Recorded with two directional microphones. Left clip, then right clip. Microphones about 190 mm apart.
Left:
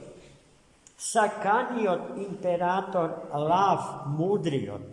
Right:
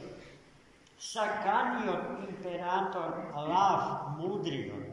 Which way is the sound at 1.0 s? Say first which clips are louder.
Left 8 dB; 75° left (ahead or behind).